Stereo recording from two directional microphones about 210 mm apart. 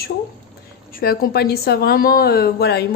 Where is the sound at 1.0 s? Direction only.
45° left (ahead or behind).